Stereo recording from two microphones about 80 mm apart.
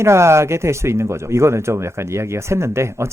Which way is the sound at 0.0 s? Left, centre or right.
Right.